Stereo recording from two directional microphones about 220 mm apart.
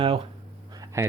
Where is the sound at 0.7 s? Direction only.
15° right (ahead or behind).